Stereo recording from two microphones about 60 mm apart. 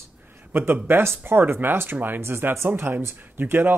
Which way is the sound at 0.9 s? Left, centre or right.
Right.